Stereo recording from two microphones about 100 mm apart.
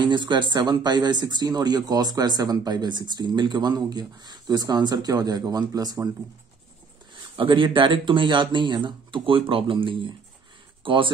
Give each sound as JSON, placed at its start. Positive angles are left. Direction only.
{"t": 0.0, "sound": "speech", "side_deg": -50}
{"t": 7.3, "sound": "speech", "side_deg": -55}